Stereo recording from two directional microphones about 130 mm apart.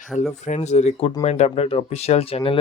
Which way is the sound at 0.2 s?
65° left (ahead or behind).